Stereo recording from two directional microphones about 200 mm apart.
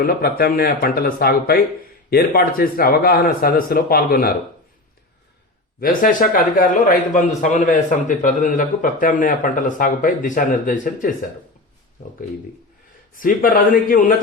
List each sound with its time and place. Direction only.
0.0 s speech: 50° left (ahead or behind)
5.8 s a man's voice: 45° left (ahead or behind)
13.1 s speech: 45° left (ahead or behind)